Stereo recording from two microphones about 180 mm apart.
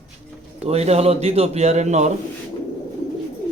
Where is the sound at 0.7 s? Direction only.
35° right (ahead or behind).